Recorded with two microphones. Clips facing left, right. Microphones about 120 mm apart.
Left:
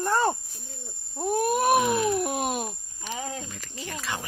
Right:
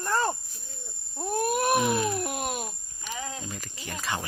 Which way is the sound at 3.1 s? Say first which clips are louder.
Left 2 dB; 35° left (ahead or behind).